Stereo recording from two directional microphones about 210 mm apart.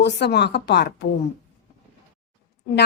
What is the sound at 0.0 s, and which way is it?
A woman's voice, 55° left (ahead or behind).